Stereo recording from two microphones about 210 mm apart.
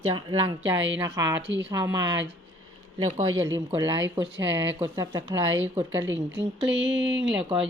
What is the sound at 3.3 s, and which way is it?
Speech, 65° right (ahead or behind).